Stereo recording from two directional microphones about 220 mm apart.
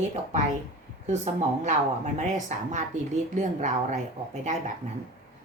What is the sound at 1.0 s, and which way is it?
A woman's voice, 35° right (ahead or behind).